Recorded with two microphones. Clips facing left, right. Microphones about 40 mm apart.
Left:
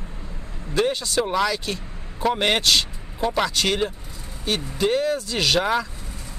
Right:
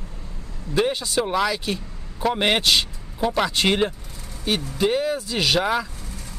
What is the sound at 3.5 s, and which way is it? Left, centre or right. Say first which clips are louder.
Speech: right 2 dB; right.